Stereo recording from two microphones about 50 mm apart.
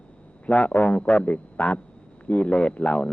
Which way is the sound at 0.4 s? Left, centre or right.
Left.